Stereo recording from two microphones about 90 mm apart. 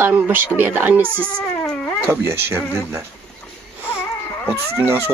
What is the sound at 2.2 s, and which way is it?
Speech, 25° right (ahead or behind).